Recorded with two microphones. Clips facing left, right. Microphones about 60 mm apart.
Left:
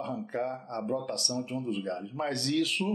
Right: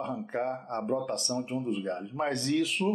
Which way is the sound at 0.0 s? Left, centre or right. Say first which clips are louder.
Right 1 dB; centre.